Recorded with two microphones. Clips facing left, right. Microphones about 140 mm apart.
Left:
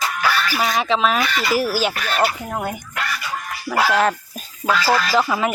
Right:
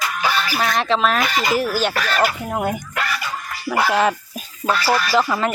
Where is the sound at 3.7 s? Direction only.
5° right (ahead or behind).